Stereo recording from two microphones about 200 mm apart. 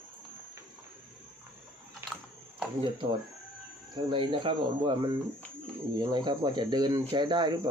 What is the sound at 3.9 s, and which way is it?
Speech, 25° right (ahead or behind).